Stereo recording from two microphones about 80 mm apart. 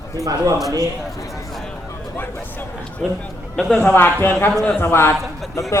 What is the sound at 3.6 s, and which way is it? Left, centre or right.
A man's voice, centre.